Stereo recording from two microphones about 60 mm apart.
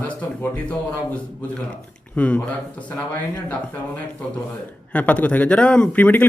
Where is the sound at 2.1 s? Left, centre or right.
Left.